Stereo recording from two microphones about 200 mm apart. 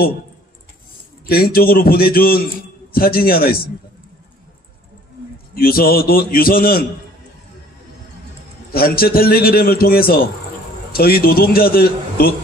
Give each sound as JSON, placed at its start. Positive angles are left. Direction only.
{"t": 1.2, "sound": "a man's voice", "side_deg": 50}
{"t": 5.5, "sound": "a man's voice", "side_deg": 45}
{"t": 8.7, "sound": "a man's voice", "side_deg": 50}